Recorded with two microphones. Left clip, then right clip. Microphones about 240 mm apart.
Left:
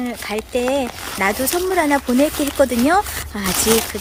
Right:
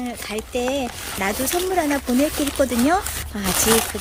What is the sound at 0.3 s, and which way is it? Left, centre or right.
Speech, centre.